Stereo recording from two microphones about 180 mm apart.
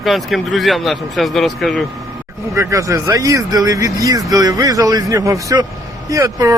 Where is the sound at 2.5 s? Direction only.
15° right (ahead or behind).